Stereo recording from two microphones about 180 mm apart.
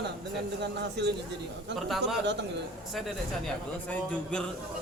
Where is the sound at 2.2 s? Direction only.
75° right (ahead or behind).